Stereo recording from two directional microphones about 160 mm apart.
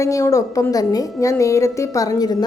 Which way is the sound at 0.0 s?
20° left (ahead or behind).